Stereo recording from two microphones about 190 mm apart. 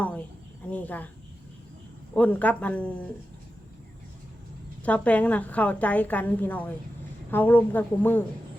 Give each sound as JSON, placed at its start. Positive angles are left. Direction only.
{"t": 0.7, "sound": "a woman's voice", "side_deg": 10}
{"t": 2.1, "sound": "a woman's voice", "side_deg": 10}
{"t": 4.8, "sound": "a woman's voice", "side_deg": 5}